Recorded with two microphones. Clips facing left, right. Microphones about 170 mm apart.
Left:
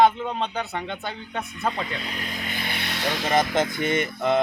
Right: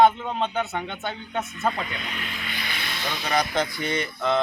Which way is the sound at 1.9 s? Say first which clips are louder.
Left 2 dB; 35° left (ahead or behind).